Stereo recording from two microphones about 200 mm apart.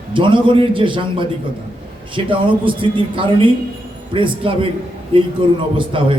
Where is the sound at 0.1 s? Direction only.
25° right (ahead or behind).